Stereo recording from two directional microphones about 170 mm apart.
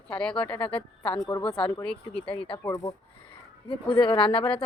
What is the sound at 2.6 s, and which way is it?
Speech, 20° left (ahead or behind).